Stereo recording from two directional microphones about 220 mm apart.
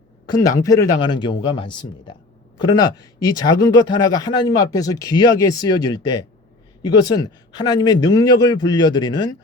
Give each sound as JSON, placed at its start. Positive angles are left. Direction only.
{"t": 0.3, "sound": "speech", "side_deg": 15}